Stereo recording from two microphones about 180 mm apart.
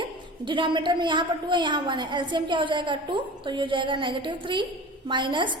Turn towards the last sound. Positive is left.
turn(degrees=-25)  # may be behind; listen again after turning